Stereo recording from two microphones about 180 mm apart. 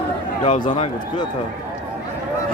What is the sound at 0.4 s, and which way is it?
Speech, 35° left (ahead or behind).